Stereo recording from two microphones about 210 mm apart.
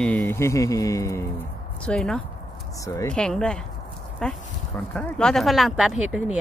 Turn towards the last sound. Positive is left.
turn(degrees=-5)  # may be behind; listen again after turning